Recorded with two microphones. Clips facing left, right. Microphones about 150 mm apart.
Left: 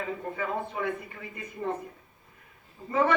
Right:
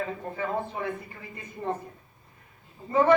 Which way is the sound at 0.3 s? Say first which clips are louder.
Right 3 dB; 30° right (ahead or behind).